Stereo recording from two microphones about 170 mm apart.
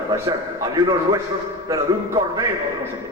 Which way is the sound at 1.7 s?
20° right (ahead or behind).